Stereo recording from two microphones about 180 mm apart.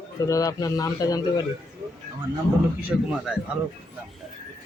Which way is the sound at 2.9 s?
Centre (ahead or behind).